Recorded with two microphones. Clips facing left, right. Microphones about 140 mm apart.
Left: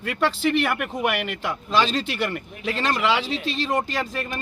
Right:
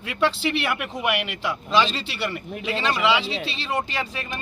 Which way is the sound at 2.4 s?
5° right (ahead or behind).